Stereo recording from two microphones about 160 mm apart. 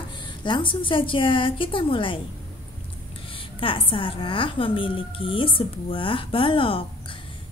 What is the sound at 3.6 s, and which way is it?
A woman's voice, 35° left (ahead or behind).